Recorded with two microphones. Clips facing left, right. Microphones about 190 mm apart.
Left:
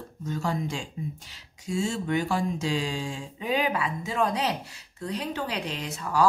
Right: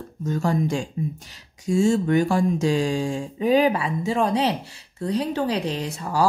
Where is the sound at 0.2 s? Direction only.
45° right (ahead or behind).